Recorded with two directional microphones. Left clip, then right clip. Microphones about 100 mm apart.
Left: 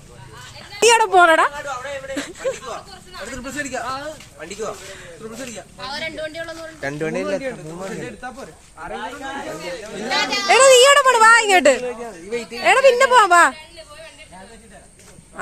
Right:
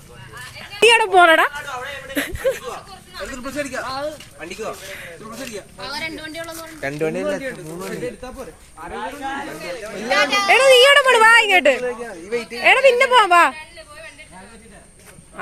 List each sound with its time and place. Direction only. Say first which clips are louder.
0.8 s a sound: right 1 dB; 20° left (ahead or behind)
1.1 s speech: right 1 dB; centre (ahead or behind)
2.1 s a sound: right 7 dB; 20° right (ahead or behind)
3.2 s speech: right 1 dB; 10° left (ahead or behind)
3.6 s speech: even; 25° left (ahead or behind)
5.8 s speech: left 2 dB; 25° left (ahead or behind)
7.4 s speech: left 1 dB; 5° left (ahead or behind)
10.1 s a woman's voice: right 2 dB; 15° left (ahead or behind)
11.2 s a woman's voice: even; 5° left (ahead or behind)
12.7 s a woman's voice: left 1 dB; 15° left (ahead or behind)